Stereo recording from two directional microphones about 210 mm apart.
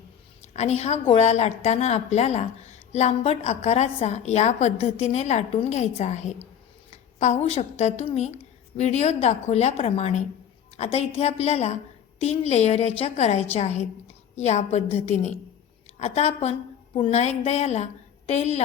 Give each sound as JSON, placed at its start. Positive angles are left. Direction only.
{"t": 0.5, "sound": "a woman's voice", "side_deg": 30}